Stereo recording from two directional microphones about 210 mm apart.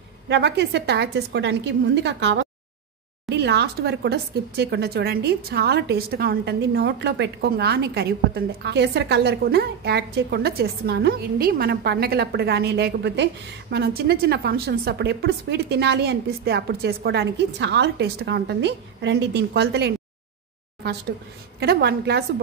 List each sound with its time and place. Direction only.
0.3 s a woman's voice: 55° right (ahead or behind)
21.5 s speech: 50° right (ahead or behind)